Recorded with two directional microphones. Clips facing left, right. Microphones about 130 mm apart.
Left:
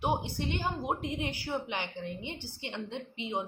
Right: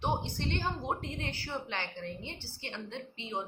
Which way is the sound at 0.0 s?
10° left (ahead or behind).